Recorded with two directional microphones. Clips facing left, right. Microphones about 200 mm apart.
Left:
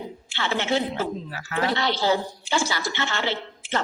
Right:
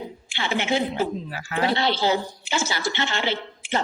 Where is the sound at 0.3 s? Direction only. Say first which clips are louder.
Right 1 dB; 15° right (ahead or behind).